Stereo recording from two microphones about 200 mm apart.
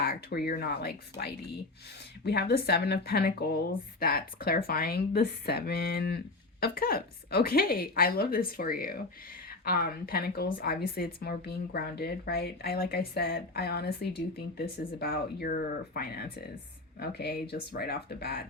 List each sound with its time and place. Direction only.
0.0 s speech: 50° left (ahead or behind)